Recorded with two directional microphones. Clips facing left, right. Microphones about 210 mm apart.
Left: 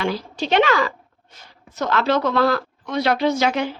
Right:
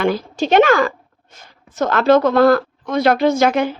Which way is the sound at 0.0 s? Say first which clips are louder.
Right 6 dB; 50° right (ahead or behind).